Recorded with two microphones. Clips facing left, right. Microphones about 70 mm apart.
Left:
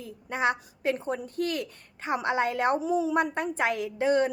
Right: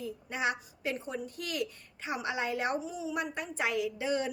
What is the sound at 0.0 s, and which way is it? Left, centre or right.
A woman's voice, left.